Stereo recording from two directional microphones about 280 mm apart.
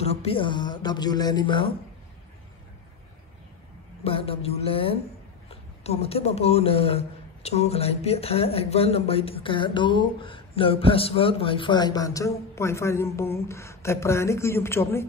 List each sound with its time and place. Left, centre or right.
0.0 s speech: left
4.0 s speech: centre